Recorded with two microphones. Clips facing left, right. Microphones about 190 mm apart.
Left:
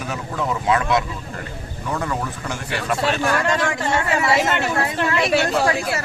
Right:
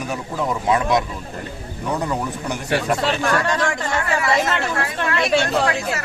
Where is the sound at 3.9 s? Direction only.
25° left (ahead or behind).